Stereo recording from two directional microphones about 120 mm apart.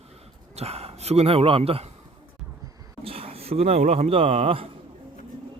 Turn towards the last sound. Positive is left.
turn(degrees=-55)  # may be behind; listen again after turning